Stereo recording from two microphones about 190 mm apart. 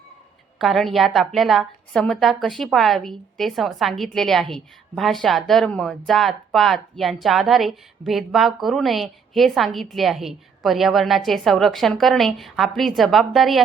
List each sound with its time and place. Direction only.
0.6 s a woman's voice: centre (ahead or behind)